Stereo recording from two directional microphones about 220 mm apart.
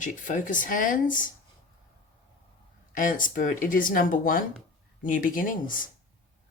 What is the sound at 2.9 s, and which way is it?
Speech, 40° left (ahead or behind).